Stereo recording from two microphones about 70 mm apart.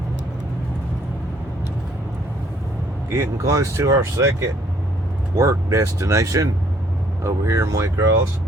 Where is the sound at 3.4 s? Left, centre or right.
Right.